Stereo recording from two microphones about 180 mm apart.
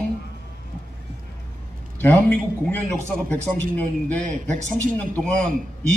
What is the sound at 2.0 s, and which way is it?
Speech, 10° left (ahead or behind).